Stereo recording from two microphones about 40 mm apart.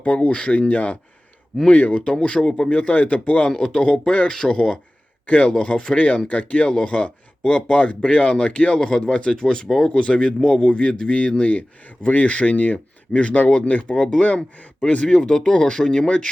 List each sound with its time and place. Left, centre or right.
0.0 s speech: left
2.5 s speech: left
2.7 s speech: left
3.6 s speech: left
5.2 s speech: left
8.8 s speech: left
13.9 s speech: centre
14.3 s speech: left